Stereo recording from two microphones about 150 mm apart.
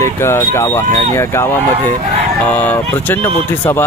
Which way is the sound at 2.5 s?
10° left (ahead or behind).